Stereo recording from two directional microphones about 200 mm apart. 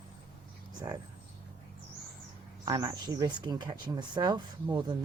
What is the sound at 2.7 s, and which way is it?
Speech, 20° right (ahead or behind).